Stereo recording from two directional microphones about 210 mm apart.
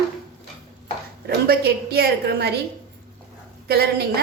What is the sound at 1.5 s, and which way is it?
A woman's voice, 50° right (ahead or behind).